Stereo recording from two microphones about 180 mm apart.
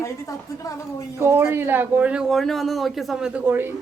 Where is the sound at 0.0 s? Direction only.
20° left (ahead or behind).